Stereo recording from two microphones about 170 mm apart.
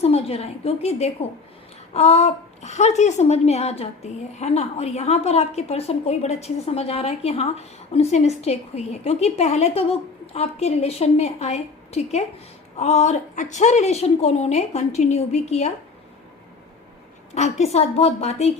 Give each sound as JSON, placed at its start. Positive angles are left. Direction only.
{"t": 0.0, "sound": "a woman's voice", "side_deg": 35}
{"t": 17.3, "sound": "a woman's voice", "side_deg": 40}